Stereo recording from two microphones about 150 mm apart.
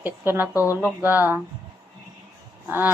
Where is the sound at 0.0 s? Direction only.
15° right (ahead or behind).